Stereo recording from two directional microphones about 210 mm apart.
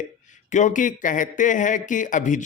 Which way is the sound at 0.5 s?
35° left (ahead or behind).